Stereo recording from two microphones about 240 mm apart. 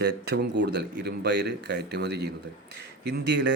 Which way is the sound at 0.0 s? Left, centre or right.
Right.